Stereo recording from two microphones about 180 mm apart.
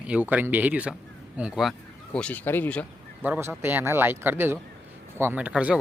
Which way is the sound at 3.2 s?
10° right (ahead or behind).